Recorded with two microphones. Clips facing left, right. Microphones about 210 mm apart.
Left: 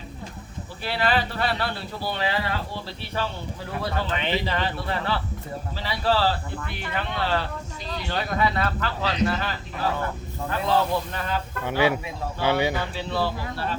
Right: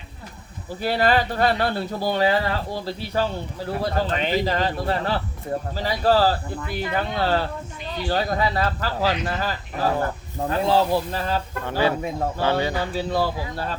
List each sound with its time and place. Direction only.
0.8 s speech: 45° right (ahead or behind)
11.6 s speech: 15° left (ahead or behind)
12.9 s speech: 40° right (ahead or behind)